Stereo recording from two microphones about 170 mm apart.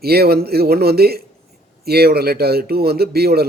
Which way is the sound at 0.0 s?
65° right (ahead or behind).